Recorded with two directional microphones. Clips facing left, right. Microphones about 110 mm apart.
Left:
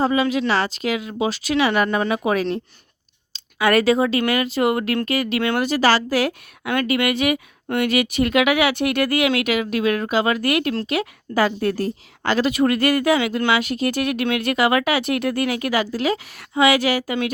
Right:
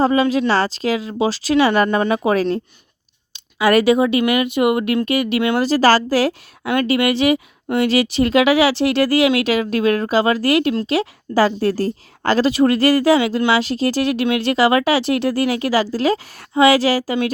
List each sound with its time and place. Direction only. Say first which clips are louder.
0.0 s speech: right 4 dB; 40° right (ahead or behind)
3.3 s a woman's voice: right 3 dB; 25° right (ahead or behind)